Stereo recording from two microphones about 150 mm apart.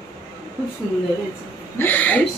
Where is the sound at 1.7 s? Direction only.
10° left (ahead or behind).